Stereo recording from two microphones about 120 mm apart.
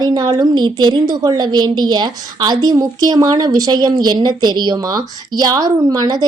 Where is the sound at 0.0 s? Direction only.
35° right (ahead or behind).